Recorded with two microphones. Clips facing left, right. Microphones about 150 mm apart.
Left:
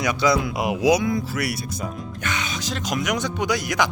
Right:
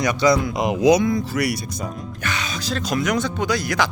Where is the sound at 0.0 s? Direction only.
5° left (ahead or behind).